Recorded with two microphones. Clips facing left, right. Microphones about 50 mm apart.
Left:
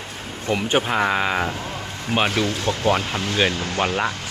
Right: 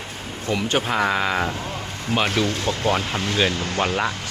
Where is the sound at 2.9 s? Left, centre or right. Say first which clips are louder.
Left 2 dB; centre.